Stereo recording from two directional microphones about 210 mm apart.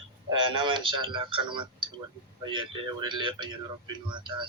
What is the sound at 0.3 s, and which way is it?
Speech, 25° right (ahead or behind).